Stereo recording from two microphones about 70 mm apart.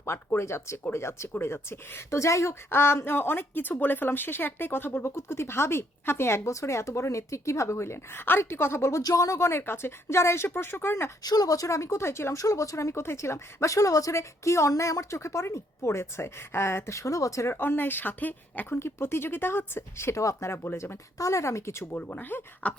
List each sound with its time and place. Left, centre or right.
0.3 s a woman's voice: left
9.0 s a woman's voice: left
11.2 s speech: left
17.5 s speech: left
18.7 s a woman's voice: left
21.2 s speech: left
21.9 s speech: left